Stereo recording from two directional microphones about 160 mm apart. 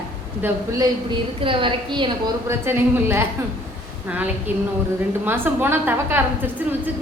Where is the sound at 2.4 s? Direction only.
15° right (ahead or behind).